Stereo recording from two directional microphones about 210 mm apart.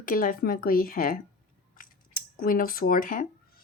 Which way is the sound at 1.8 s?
40° left (ahead or behind).